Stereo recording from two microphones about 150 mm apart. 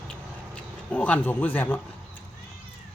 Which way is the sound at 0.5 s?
10° left (ahead or behind).